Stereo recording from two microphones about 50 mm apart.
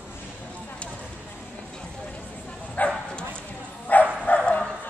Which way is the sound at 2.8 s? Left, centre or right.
Left.